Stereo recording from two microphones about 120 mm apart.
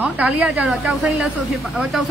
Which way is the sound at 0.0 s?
10° right (ahead or behind).